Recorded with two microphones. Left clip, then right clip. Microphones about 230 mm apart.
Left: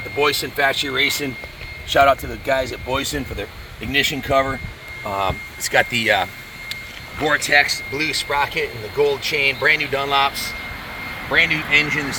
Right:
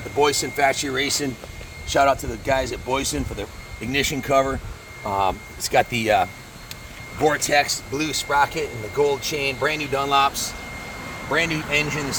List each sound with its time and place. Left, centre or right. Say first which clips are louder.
0.2 s speech: left 1 dB; centre
2.5 s speech: left 2 dB; centre
3.9 s speech: left 2 dB; centre; by 6.2 s right
7.3 s speech: left 3 dB; right
11.3 s speech: left 6 dB; right